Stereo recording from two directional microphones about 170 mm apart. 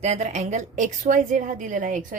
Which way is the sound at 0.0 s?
40° right (ahead or behind).